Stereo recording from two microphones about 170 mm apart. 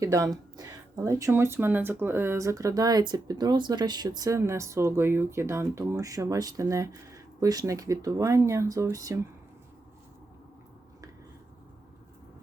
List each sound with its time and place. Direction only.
0.0 s speech: 20° right (ahead or behind)